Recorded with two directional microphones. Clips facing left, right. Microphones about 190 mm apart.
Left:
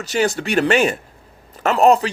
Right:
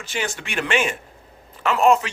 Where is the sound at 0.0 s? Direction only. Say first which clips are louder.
Left 9 dB; 40° left (ahead or behind).